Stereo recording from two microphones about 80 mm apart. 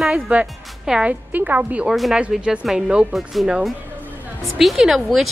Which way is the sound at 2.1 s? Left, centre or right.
Centre.